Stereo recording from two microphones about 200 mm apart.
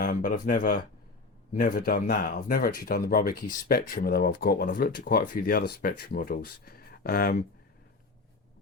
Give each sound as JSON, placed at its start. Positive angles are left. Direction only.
{"t": 0.0, "sound": "speech", "side_deg": 40}